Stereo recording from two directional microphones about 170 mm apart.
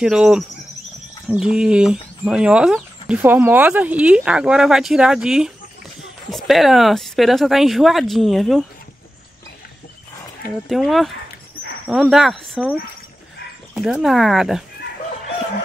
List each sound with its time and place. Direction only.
0.0 s speech: 5° right (ahead or behind)
10.7 s speech: centre (ahead or behind)
13.7 s speech: 5° right (ahead or behind)